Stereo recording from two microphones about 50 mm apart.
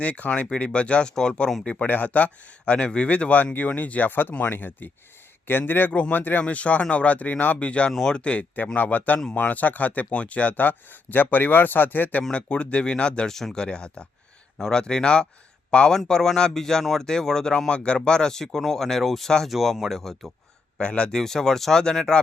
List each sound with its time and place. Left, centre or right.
0.0 s speech: left
6.4 s speech: left
10.5 s speech: left
12.3 s speech: left
19.5 s speech: centre
20.7 s speech: left
21.2 s speech: centre